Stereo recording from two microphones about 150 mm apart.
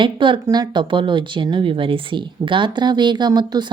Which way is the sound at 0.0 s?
35° right (ahead or behind).